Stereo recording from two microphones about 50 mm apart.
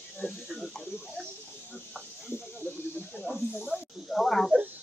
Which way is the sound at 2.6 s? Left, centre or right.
Left.